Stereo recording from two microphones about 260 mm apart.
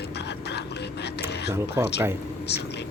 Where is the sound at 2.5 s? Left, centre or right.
Left.